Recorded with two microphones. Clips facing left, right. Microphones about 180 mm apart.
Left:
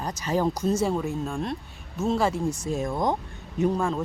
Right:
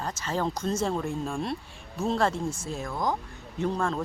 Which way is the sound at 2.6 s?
20° left (ahead or behind).